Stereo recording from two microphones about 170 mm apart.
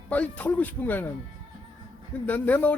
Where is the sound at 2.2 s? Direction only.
10° left (ahead or behind).